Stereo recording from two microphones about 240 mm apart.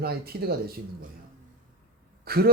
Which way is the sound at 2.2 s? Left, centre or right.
Right.